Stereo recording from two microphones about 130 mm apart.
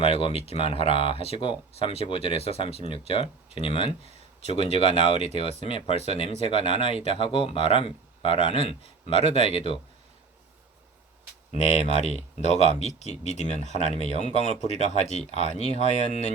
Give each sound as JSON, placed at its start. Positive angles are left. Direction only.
{"t": 0.0, "sound": "speech", "side_deg": 45}
{"t": 11.5, "sound": "speech", "side_deg": 55}